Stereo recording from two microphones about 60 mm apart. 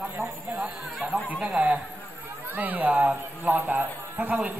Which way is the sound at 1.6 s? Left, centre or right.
Centre.